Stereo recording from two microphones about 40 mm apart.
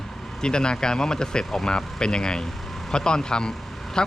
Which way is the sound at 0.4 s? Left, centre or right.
Left.